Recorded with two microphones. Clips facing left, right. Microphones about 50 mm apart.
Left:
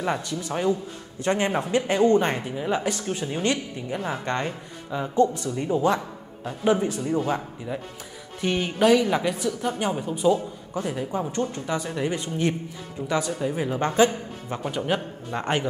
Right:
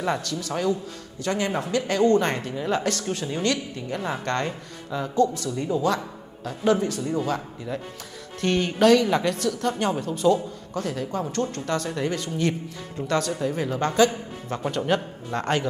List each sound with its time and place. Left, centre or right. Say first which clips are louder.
0.0 s a woman's voice: right 1 dB; centre
0.3 s a woman's voice: left 1 dB; left
8.4 s a woman's voice: right 2 dB; centre